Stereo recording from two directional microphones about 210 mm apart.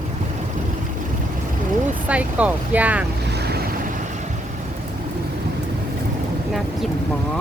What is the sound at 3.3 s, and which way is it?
Boat, 50° right (ahead or behind).